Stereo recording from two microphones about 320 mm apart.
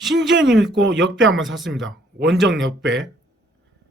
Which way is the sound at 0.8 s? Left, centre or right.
Right.